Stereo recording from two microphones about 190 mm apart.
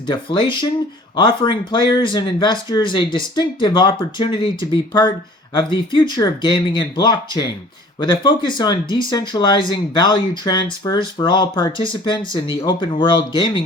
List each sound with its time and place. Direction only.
0.1 s speech: 25° left (ahead or behind)